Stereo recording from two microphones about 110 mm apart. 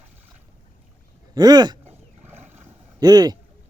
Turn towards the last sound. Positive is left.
turn(degrees=-35)  # may be behind; listen again after turning